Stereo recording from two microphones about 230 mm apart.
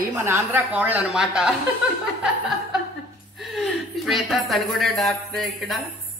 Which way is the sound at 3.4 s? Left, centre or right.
Centre.